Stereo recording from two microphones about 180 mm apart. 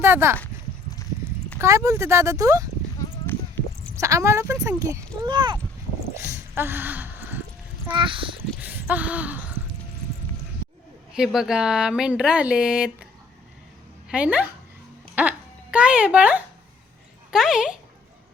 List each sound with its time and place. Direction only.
0.0 s speech: 15° right (ahead or behind)
1.5 s speech: 15° right (ahead or behind)
3.9 s speech: 15° right (ahead or behind)
6.1 s a sound: 15° right (ahead or behind)
7.9 s speech: 30° right (ahead or behind)
8.6 s a sound: 10° right (ahead or behind)
11.1 s speech: centre (ahead or behind)
14.1 s speech: 5° right (ahead or behind)